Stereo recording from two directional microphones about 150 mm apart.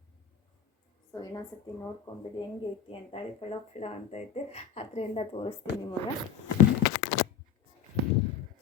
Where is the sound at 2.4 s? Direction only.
40° left (ahead or behind).